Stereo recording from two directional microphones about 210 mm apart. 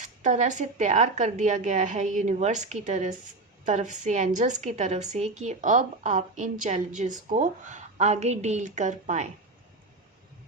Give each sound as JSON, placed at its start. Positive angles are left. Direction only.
{"t": 0.0, "sound": "a woman's voice", "side_deg": -35}